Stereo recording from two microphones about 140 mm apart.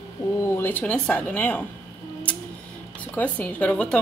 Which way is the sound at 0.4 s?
15° left (ahead or behind).